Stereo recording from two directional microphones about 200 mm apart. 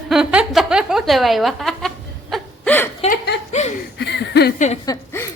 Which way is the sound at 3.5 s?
35° left (ahead or behind).